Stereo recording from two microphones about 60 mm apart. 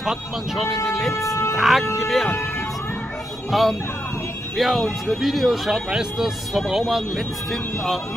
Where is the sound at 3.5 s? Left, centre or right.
Centre.